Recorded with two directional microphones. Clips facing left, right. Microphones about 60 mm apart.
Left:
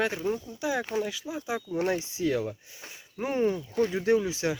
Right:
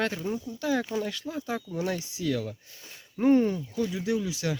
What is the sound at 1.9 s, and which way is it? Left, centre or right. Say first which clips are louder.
Speech: left 2 dB; left.